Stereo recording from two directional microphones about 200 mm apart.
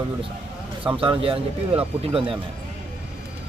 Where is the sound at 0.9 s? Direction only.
25° right (ahead or behind).